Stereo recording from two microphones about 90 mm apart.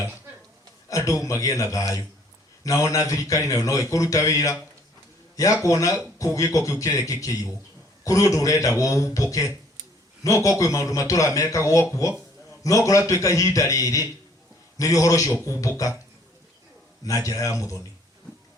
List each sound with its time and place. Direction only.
0.9 s a man's voice: 35° left (ahead or behind)
5.6 s a man's voice: 35° left (ahead or behind)
17.0 s a man's voice: 40° left (ahead or behind)